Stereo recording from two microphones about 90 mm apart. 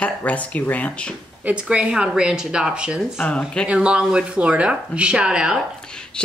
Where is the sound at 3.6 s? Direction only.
10° right (ahead or behind).